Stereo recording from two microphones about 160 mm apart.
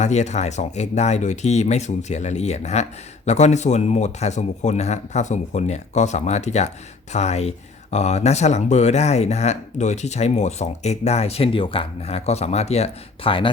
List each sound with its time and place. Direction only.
0.0 s speech: 45° left (ahead or behind)